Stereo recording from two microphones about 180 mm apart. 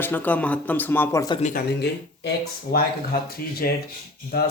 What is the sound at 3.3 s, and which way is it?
Speech, 55° left (ahead or behind).